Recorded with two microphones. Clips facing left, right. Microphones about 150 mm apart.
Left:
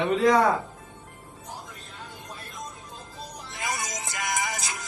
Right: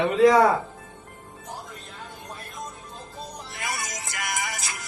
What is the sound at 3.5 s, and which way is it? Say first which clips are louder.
Music: left 2 dB; 20° left (ahead or behind).